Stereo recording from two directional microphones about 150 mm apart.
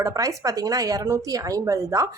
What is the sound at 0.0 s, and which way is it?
A woman's voice, 20° right (ahead or behind).